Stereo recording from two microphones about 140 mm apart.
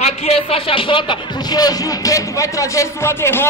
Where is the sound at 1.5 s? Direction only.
25° left (ahead or behind).